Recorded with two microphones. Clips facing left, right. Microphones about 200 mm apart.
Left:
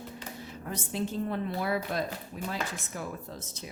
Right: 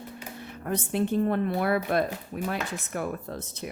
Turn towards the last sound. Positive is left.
turn(degrees=-60)  # may be behind; listen again after turning